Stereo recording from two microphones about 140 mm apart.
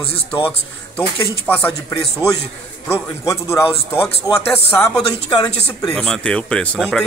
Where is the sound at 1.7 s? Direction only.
25° left (ahead or behind).